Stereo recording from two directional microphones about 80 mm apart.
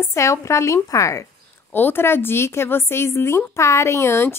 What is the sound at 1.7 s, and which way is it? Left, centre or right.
A woman's voice, left.